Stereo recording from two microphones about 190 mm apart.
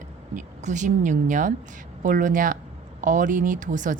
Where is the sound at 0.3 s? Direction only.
40° right (ahead or behind).